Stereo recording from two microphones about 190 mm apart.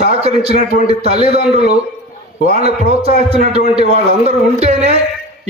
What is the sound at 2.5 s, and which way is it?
A man's voice, 35° right (ahead or behind).